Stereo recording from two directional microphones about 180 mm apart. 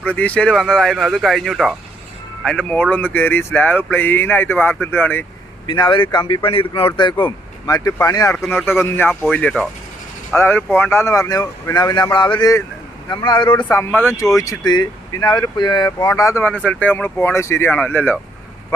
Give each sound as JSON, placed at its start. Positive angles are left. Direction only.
{"t": 0.0, "sound": "speech", "side_deg": 10}
{"t": 5.6, "sound": "a man's voice", "side_deg": 25}
{"t": 13.7, "sound": "speech", "side_deg": 15}